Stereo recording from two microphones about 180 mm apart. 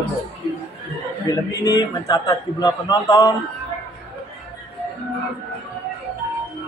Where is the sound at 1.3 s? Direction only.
20° left (ahead or behind).